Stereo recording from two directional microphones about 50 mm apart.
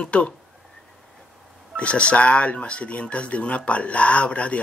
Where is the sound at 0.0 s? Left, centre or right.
Left.